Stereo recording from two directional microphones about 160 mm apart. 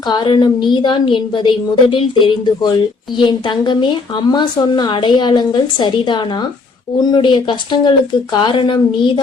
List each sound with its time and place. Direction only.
0.1 s a woman's voice: 25° left (ahead or behind)